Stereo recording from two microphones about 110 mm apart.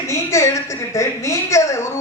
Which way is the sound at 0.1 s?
25° left (ahead or behind).